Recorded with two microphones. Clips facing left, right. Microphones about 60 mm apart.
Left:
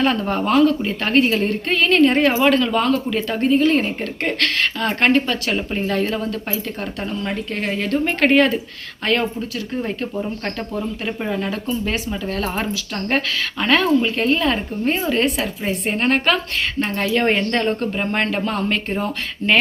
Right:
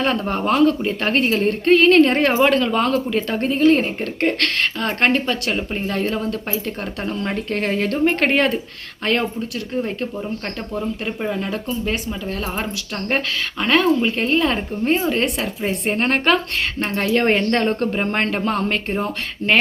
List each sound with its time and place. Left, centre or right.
0.0 s speech: right
2.7 s speech: right
7.1 s speech: right
11.9 s speech: centre; by 19.5 s right